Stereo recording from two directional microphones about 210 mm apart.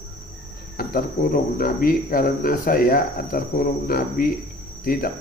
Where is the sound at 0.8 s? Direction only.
40° left (ahead or behind).